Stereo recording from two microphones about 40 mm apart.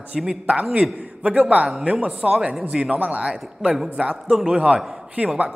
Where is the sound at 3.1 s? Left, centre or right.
Right.